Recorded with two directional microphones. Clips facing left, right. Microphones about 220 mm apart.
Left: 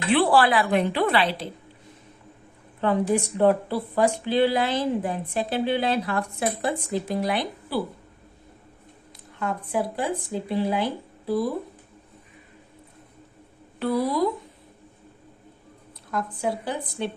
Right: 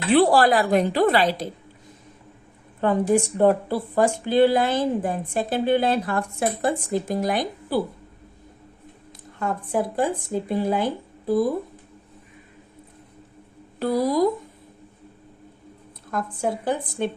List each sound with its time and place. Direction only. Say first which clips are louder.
0.1 s a woman's voice: right 3 dB; 40° right (ahead or behind)
3.3 s speech: right 1 dB; 45° right (ahead or behind)
9.4 s speech: right 2 dB; 50° right (ahead or behind)
13.7 s a woman's voice: right 3 dB; 40° right (ahead or behind)
16.1 s speech: right 1 dB; 50° right (ahead or behind)